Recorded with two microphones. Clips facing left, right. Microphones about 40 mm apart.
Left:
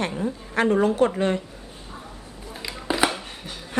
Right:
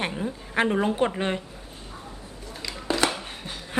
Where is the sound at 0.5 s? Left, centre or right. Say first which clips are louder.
Left 3 dB; centre.